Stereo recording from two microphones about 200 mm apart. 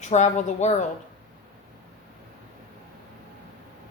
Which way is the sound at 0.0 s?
35° left (ahead or behind).